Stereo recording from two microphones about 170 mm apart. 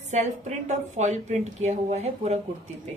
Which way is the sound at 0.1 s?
40° right (ahead or behind).